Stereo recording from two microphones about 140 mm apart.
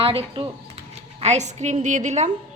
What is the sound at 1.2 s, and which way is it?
A woman's voice, 55° right (ahead or behind).